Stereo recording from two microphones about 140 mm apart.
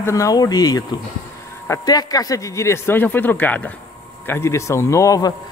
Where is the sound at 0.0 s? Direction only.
20° left (ahead or behind).